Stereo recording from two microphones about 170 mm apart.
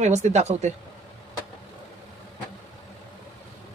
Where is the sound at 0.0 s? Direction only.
40° right (ahead or behind).